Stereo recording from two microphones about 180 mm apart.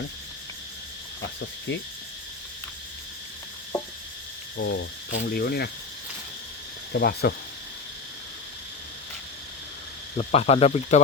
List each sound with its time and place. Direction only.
4.5 s cricket: 70° left (ahead or behind)
5.1 s speech: 60° left (ahead or behind)
6.9 s speech: 60° left (ahead or behind)
10.2 s speech: 35° left (ahead or behind)